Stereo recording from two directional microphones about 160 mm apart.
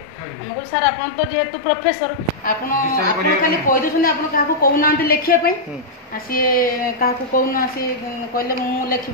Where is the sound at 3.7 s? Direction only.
60° left (ahead or behind).